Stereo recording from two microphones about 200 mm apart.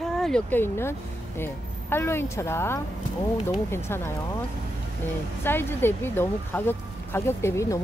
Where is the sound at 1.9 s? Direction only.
15° left (ahead or behind).